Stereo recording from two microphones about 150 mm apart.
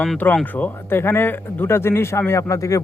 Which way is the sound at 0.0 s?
10° left (ahead or behind).